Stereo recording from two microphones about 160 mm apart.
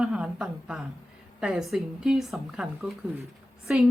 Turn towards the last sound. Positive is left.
turn(degrees=0)  # may be behind; listen again after turning